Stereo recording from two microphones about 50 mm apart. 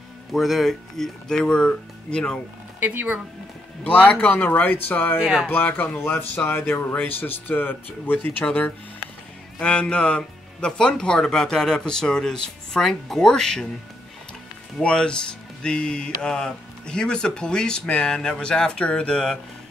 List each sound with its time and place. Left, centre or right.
0.3 s speech: centre; by 2.4 s left
2.8 s speech: right
3.8 s speech: left
5.2 s speech: centre
5.5 s speech: left
5.9 s speech: left
9.6 s speech: left
14.8 s speech: centre